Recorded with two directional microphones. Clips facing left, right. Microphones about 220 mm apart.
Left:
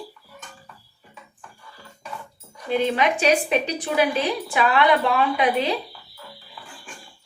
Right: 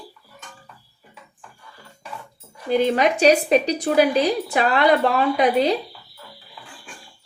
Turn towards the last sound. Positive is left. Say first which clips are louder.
# right 4 dB
turn(degrees=-40)  # may be behind; listen again after turning